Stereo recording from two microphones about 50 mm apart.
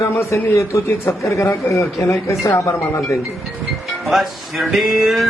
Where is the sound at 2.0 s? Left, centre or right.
Left.